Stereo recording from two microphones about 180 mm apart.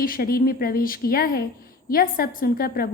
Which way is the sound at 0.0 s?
55° left (ahead or behind).